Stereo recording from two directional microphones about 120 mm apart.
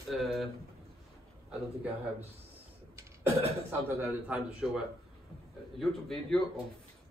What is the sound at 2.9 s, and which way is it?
A man's voice, 20° right (ahead or behind).